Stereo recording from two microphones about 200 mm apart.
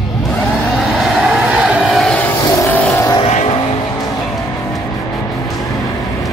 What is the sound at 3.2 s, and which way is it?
Vehicle, 30° left (ahead or behind).